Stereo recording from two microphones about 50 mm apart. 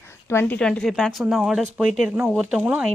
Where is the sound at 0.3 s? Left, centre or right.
Left.